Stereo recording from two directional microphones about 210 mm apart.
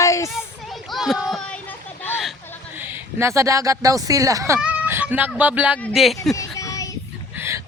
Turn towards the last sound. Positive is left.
turn(degrees=-15)  # may be behind; listen again after turning